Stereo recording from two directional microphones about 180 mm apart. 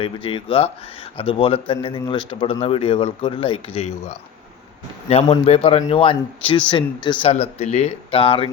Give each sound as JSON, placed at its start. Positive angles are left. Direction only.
{"t": 0.0, "sound": "speech", "side_deg": 30}